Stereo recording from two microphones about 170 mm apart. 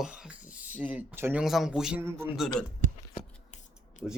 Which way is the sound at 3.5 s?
45° left (ahead or behind).